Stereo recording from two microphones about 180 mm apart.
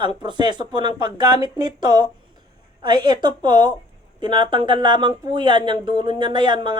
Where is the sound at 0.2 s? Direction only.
25° right (ahead or behind).